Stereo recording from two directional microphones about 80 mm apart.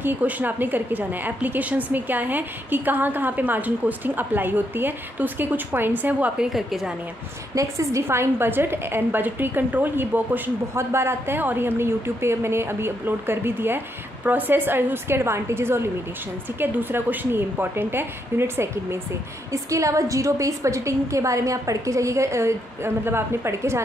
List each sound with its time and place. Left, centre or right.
0.0 s a woman's voice: right; by 6.9 s centre
7.5 s a woman's voice: right